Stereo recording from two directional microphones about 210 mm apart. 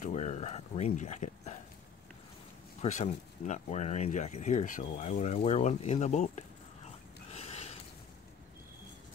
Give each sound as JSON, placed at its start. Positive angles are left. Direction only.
{"t": 0.0, "sound": "speech", "side_deg": 35}
{"t": 2.8, "sound": "speech", "side_deg": 35}
{"t": 7.2, "sound": "a sound", "side_deg": 30}